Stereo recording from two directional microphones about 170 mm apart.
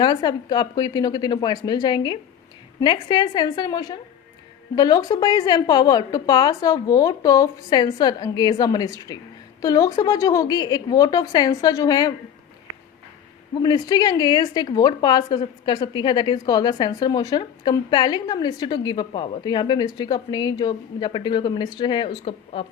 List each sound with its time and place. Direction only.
0.0 s a woman's voice: 25° left (ahead or behind)
13.5 s a woman's voice: 25° left (ahead or behind)